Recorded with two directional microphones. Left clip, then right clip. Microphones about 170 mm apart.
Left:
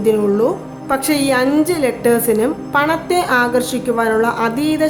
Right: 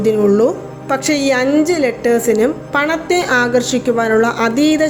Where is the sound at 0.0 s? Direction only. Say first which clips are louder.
Right 2 dB; 20° right (ahead or behind).